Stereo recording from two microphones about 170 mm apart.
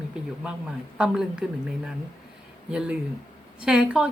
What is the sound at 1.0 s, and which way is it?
Speech, 5° right (ahead or behind).